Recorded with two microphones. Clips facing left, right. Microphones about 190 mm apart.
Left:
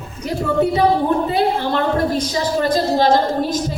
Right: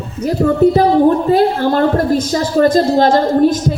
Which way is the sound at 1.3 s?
45° right (ahead or behind).